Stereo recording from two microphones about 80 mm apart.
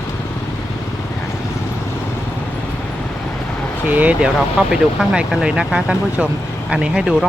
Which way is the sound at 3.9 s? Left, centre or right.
Centre.